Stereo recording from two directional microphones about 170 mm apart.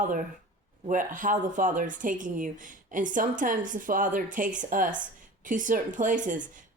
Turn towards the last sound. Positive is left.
turn(degrees=-50)  # may be behind; listen again after turning